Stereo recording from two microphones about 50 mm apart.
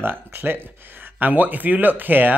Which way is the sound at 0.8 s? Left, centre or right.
Right.